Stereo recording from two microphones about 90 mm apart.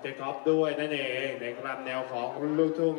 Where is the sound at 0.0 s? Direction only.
15° right (ahead or behind).